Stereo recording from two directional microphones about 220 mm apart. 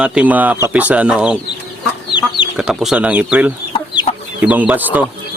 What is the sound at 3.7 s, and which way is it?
Chicken, 20° left (ahead or behind).